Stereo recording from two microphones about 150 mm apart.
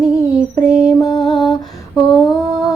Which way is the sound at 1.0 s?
25° left (ahead or behind).